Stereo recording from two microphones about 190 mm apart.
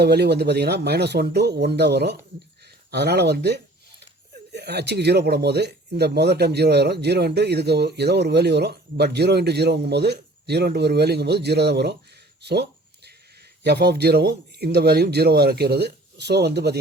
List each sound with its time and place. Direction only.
0.0 s speech: 60° right (ahead or behind)
13.7 s speech: 60° right (ahead or behind)